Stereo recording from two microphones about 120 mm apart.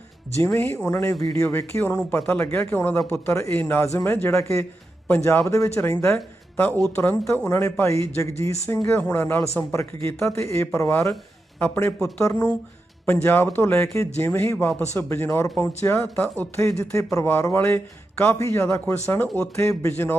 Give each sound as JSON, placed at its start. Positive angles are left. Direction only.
{"t": 0.4, "sound": "a man's voice", "side_deg": 20}
{"t": 12.2, "sound": "a man's voice", "side_deg": 25}